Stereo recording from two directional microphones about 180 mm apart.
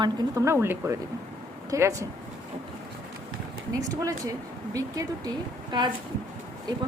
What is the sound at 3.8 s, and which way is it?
A woman's voice, 20° right (ahead or behind).